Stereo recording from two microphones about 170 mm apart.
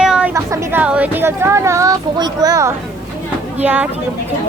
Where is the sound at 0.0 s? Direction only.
5° right (ahead or behind).